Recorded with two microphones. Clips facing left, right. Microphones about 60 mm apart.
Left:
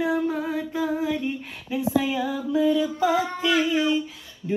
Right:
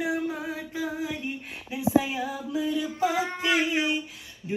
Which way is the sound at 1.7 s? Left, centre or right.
Centre.